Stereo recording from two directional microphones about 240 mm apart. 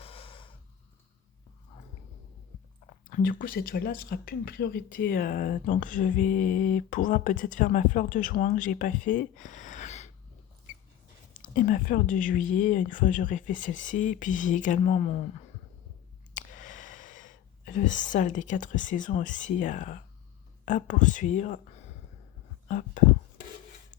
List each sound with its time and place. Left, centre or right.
0.0 s breathing: left
3.1 s speech: left
11.4 s speech: left
16.3 s speech: left